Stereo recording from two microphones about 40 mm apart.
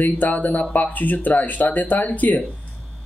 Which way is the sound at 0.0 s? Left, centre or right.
Left.